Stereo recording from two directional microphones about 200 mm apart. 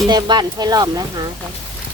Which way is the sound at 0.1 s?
20° right (ahead or behind).